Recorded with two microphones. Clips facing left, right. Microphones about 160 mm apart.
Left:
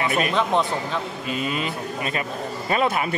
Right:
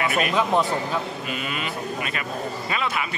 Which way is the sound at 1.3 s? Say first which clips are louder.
Left 6 dB; 30° left (ahead or behind).